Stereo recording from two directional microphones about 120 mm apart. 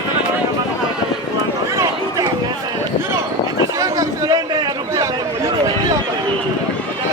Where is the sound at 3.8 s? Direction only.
30° right (ahead or behind).